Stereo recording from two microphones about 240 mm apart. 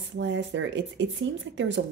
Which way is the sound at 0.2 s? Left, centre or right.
Right.